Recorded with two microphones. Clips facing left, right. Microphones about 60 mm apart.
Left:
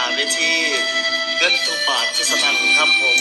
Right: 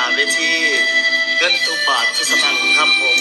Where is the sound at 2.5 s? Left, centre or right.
Left.